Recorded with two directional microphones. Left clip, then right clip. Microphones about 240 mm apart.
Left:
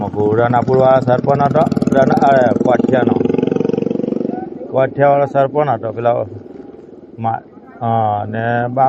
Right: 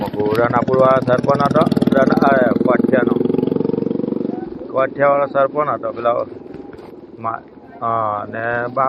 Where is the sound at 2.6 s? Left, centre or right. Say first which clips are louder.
Left 2 dB; left.